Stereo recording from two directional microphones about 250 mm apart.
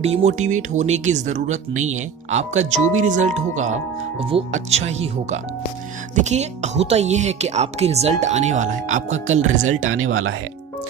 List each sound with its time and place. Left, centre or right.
0.0 s speech: right
9.8 s speech: right